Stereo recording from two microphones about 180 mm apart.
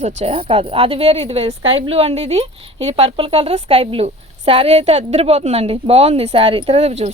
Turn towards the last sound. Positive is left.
turn(degrees=-35)  # may be behind; listen again after turning